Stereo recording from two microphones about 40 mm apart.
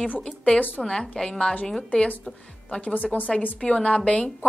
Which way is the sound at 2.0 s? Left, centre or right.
Left.